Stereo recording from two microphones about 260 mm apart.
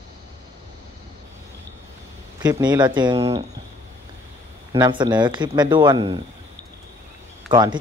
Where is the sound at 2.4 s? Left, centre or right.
Centre.